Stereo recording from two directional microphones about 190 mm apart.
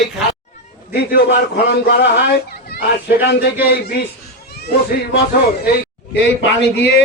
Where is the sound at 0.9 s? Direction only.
60° left (ahead or behind).